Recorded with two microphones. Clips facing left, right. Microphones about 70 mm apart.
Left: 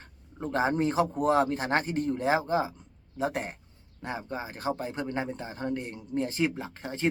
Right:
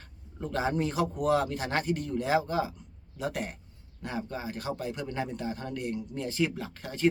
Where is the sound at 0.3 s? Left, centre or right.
Left.